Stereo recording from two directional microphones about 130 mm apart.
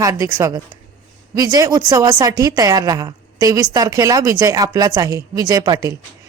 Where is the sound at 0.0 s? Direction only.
25° right (ahead or behind).